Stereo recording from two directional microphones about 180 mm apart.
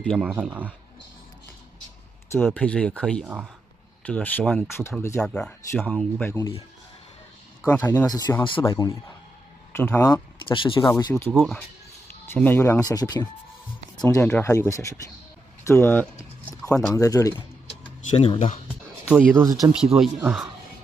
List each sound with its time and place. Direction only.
0.0 s speech: 5° left (ahead or behind)
0.3 s speech: 10° right (ahead or behind)
2.3 s speech: 10° left (ahead or behind)
7.6 s speech: 10° left (ahead or behind)
11.3 s speech: centre (ahead or behind)
12.3 s speech: 10° left (ahead or behind)
15.6 s a sound: 15° left (ahead or behind)
16.9 s speech: 20° left (ahead or behind)
17.8 s speech: 30° left (ahead or behind)
19.0 s speech: 5° right (ahead or behind)